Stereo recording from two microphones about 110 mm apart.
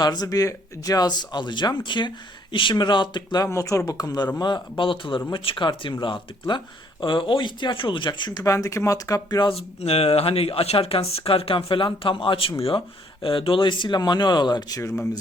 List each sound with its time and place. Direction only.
0.0 s speech: 40° left (ahead or behind)
9.4 s speech: 60° left (ahead or behind); by 15.2 s 25° left (ahead or behind)